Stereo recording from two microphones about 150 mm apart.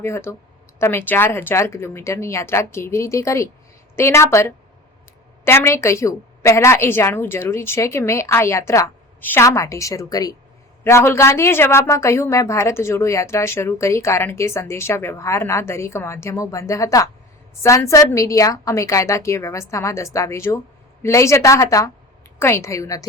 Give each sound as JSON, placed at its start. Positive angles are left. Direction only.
{"t": 0.0, "sound": "a woman's voice", "side_deg": 20}